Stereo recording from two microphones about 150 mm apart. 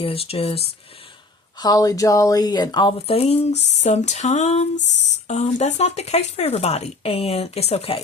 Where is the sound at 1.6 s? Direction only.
25° left (ahead or behind).